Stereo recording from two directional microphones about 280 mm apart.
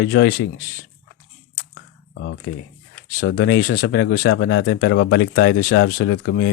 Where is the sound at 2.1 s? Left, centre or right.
Left.